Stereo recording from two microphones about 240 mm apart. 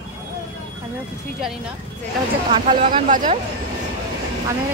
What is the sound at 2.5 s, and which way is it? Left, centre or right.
Speech, right.